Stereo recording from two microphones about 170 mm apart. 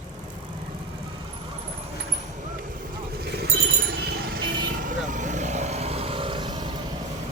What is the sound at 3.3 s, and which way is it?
Vehicle, 75° right (ahead or behind).